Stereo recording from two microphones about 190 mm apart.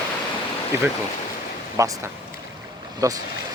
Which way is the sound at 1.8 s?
15° right (ahead or behind).